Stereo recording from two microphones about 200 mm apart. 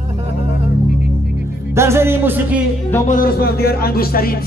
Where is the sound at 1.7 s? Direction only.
15° right (ahead or behind).